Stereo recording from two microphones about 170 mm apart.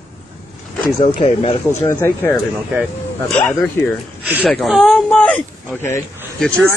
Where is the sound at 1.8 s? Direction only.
15° left (ahead or behind).